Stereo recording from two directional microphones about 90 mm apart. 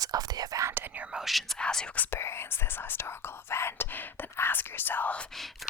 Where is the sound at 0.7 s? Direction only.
20° right (ahead or behind); by 2.0 s 10° left (ahead or behind).